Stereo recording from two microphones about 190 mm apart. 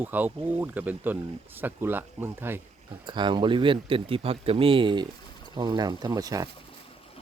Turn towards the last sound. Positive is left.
turn(degrees=-20)  # may be behind; listen again after turning